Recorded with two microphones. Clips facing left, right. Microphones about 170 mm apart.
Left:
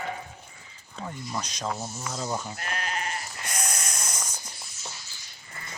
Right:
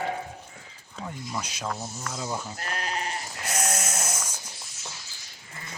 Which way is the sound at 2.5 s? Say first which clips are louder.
Right 1 dB; 35° right (ahead or behind).